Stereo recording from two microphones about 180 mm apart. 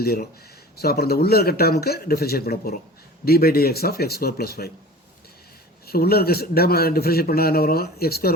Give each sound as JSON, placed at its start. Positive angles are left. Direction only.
{"t": 0.0, "sound": "a man's voice", "side_deg": 60}
{"t": 5.8, "sound": "a man's voice", "side_deg": 60}